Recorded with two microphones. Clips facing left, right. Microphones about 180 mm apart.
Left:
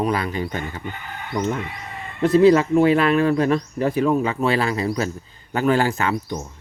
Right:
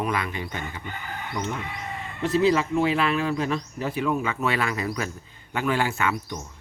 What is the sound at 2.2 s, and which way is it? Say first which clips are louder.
Speech: left 7 dB; 45° left (ahead or behind).